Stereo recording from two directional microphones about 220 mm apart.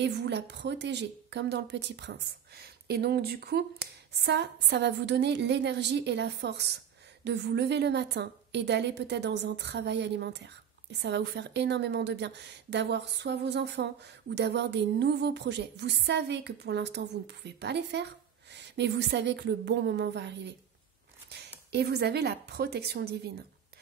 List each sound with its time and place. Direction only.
0.0 s a woman's voice: 50° right (ahead or behind)